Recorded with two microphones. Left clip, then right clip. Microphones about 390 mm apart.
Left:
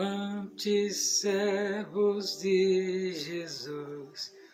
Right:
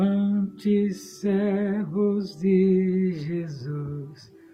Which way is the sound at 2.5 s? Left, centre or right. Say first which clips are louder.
Right 4 dB; right.